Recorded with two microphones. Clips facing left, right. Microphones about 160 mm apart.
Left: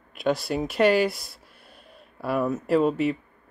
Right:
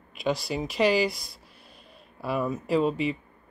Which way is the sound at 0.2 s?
55° left (ahead or behind).